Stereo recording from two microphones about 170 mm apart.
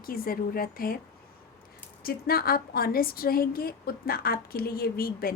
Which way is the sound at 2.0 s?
60° left (ahead or behind).